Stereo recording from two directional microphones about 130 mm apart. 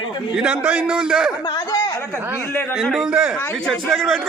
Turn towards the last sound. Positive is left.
turn(degrees=0)  # may be behind; listen again after turning